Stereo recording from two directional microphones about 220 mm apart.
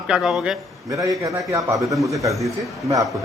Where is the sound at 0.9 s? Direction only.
15° right (ahead or behind).